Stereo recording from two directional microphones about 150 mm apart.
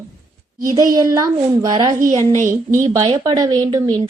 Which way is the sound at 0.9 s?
20° right (ahead or behind).